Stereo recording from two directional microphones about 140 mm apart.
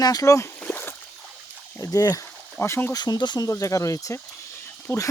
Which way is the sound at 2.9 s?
30° left (ahead or behind).